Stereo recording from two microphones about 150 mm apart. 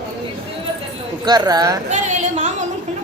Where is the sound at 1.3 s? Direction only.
25° right (ahead or behind).